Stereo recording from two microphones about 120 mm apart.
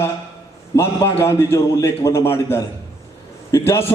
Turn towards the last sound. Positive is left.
turn(degrees=20)  # may be behind; listen again after turning